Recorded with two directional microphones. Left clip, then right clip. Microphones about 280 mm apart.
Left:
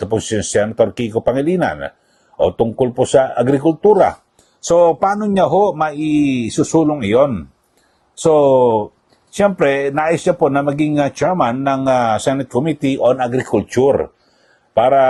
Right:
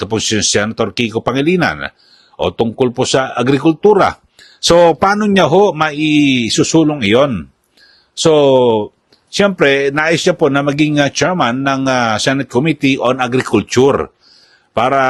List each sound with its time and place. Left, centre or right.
0.0 s a man's voice: right
14.7 s a man's voice: right